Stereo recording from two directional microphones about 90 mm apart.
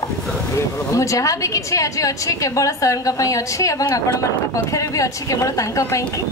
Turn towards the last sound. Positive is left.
turn(degrees=35)  # may be behind; listen again after turning